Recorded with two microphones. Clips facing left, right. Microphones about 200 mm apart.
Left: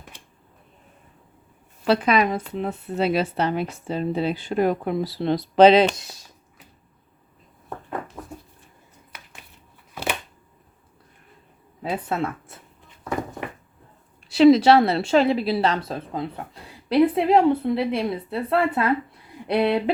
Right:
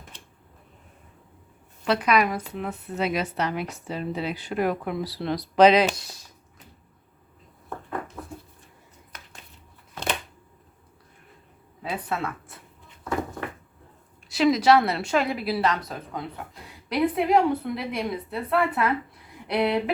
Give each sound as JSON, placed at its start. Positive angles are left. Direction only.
{"t": 1.8, "sound": "speech", "side_deg": 30}
{"t": 9.1, "sound": "dishes", "side_deg": 10}
{"t": 9.9, "sound": "a sound", "side_deg": 10}
{"t": 11.8, "sound": "speech", "side_deg": 25}
{"t": 14.3, "sound": "speech", "side_deg": 30}